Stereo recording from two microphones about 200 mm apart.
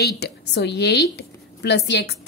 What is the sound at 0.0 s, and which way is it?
A woman's voice, 55° left (ahead or behind).